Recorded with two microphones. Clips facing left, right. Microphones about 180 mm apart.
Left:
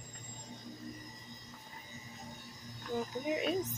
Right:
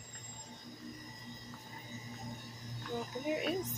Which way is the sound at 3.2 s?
Centre (ahead or behind).